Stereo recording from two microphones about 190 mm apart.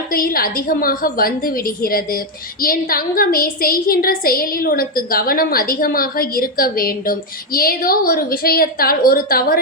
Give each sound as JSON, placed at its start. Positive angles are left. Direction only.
{"t": 0.1, "sound": "a woman's voice", "side_deg": 50}